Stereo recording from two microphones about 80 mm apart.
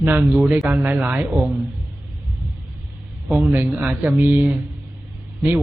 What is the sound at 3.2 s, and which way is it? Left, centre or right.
A man's voice, centre.